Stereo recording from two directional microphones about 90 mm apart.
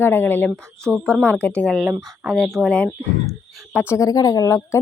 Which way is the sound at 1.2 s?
15° left (ahead or behind).